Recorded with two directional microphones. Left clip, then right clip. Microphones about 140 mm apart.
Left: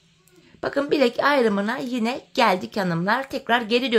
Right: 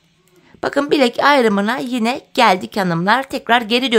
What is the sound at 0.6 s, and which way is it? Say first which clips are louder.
A woman's voice: right 5 dB; 30° right (ahead or behind).